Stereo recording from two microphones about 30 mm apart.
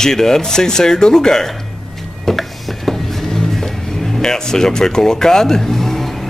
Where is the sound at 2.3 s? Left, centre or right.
Centre.